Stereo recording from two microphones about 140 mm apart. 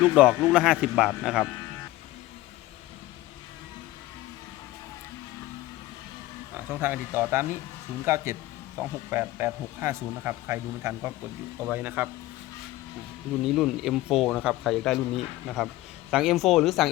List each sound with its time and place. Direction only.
0.0 s speech: 5° right (ahead or behind)
6.5 s speech: 15° right (ahead or behind)
13.4 s speech: centre (ahead or behind)